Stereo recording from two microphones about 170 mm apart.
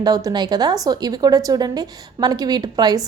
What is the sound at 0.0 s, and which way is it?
A woman's voice, 20° right (ahead or behind).